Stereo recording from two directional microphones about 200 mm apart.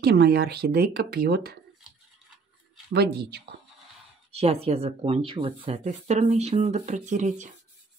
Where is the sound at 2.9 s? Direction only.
55° right (ahead or behind).